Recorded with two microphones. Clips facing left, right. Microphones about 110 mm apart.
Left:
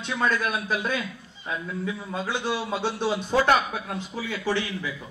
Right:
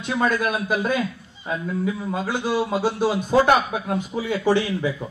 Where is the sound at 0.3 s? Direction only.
45° right (ahead or behind).